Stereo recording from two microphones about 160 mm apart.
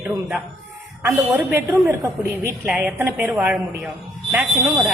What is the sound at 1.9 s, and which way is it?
Speech, 15° right (ahead or behind).